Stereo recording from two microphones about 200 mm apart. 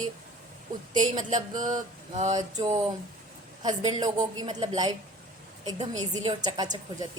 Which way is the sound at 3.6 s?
20° right (ahead or behind).